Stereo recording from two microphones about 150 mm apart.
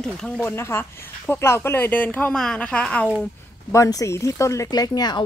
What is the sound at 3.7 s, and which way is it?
Speech, 20° left (ahead or behind).